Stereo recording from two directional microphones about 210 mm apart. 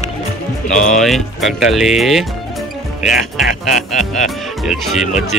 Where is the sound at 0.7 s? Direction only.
35° left (ahead or behind).